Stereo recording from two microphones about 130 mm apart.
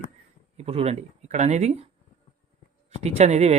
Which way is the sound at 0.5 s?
50° right (ahead or behind).